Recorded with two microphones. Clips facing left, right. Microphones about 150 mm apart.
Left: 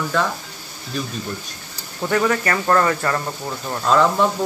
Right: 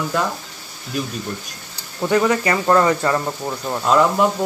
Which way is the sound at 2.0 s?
15° right (ahead or behind).